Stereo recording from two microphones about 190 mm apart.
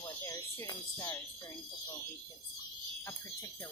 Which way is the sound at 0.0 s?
15° left (ahead or behind).